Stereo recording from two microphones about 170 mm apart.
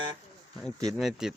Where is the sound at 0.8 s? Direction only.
Centre (ahead or behind).